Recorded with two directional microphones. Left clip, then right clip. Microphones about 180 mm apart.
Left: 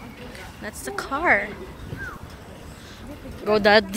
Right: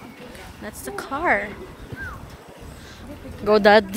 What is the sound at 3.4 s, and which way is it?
Speech, 30° right (ahead or behind).